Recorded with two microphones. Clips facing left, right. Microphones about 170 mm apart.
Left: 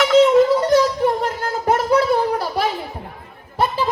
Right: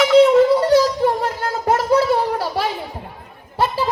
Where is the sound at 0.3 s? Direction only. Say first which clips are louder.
Right 1 dB; 30° right (ahead or behind).